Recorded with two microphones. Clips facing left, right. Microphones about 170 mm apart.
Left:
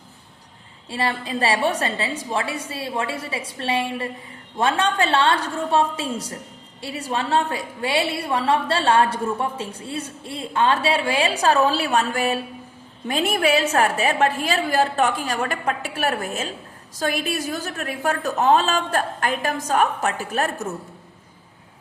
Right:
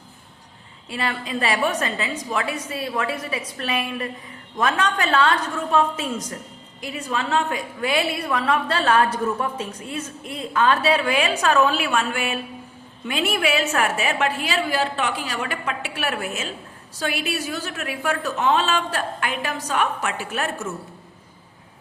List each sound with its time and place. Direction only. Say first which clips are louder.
0.9 s a woman's voice: left 2 dB; 35° left (ahead or behind)